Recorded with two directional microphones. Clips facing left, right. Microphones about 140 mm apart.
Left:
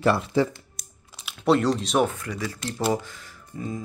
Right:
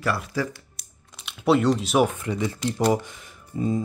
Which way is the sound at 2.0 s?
20° right (ahead or behind).